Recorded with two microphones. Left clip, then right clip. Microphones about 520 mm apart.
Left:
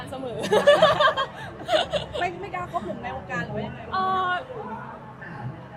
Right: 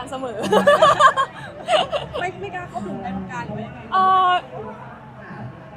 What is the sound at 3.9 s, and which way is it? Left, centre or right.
Speech, centre.